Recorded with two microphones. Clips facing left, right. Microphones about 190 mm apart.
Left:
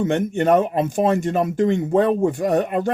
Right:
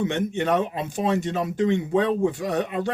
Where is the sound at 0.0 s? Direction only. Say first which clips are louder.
Left 5 dB; 45° left (ahead or behind).